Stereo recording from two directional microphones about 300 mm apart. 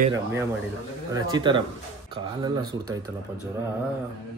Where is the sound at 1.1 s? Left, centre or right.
Centre.